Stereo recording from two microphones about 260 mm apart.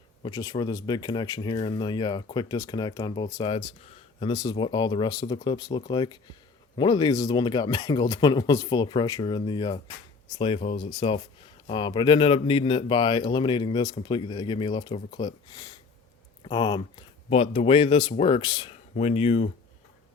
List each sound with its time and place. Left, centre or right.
0.2 s speech: centre